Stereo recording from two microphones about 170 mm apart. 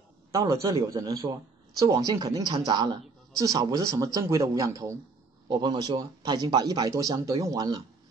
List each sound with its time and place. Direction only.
0.3 s speech: 20° right (ahead or behind)